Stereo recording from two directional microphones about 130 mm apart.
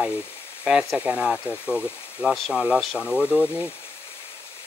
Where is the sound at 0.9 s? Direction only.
5° right (ahead or behind).